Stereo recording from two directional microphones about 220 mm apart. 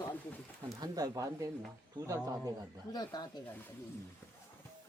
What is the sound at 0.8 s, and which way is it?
Speech, 15° right (ahead or behind).